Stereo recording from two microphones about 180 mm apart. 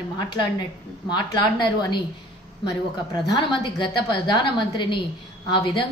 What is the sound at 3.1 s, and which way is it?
A woman's voice, 20° left (ahead or behind).